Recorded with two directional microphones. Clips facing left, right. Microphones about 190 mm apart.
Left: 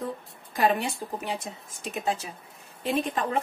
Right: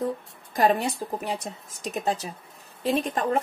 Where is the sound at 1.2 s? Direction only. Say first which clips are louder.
Right 2 dB; 40° right (ahead or behind).